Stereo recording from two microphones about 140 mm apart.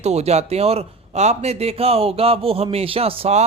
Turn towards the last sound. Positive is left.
turn(degrees=-45)  # may be behind; listen again after turning